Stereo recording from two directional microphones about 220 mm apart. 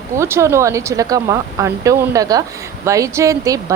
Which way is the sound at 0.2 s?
10° right (ahead or behind).